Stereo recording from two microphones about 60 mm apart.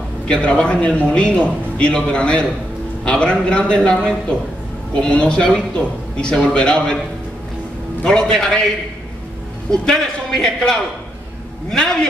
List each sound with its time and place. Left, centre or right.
0.3 s a man's voice: centre
8.0 s a man's voice: centre
9.7 s a man's voice: centre
11.7 s a man's voice: centre